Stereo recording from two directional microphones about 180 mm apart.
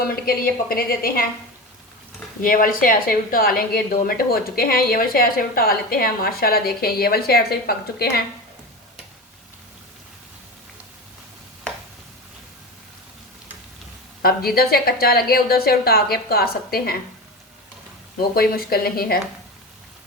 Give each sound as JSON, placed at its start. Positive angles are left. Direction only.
{"t": 0.0, "sound": "a woman's voice", "side_deg": 55}
{"t": 2.4, "sound": "a woman's voice", "side_deg": 50}
{"t": 14.2, "sound": "a woman's voice", "side_deg": 55}
{"t": 18.2, "sound": "a woman's voice", "side_deg": 60}